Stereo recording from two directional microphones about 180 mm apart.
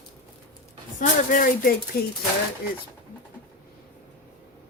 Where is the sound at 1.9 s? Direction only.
60° left (ahead or behind).